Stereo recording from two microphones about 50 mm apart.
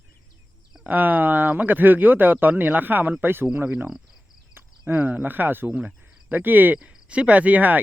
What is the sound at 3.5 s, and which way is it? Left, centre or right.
Cricket, right.